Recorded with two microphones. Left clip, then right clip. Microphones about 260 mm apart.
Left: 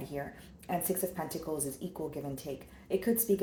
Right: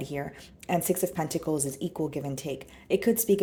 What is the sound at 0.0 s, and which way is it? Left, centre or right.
Speech, right.